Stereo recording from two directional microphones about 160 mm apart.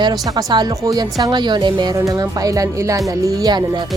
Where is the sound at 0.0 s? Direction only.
25° right (ahead or behind).